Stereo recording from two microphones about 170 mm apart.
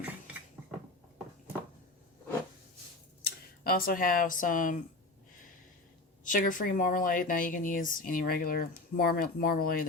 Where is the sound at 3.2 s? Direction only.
60° left (ahead or behind).